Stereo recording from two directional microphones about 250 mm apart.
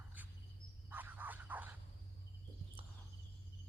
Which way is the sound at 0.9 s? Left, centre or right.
Centre.